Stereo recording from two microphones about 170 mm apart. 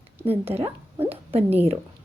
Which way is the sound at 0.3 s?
35° right (ahead or behind).